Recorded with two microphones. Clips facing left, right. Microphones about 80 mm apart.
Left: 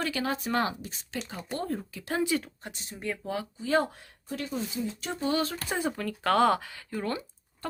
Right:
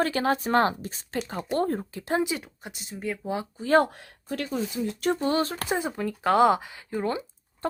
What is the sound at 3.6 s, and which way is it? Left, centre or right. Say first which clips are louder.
Speech: right 6 dB; right.